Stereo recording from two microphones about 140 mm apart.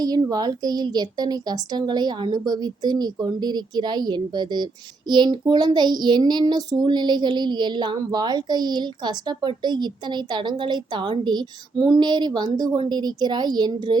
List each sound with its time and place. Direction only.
0.0 s speech: 30° right (ahead or behind)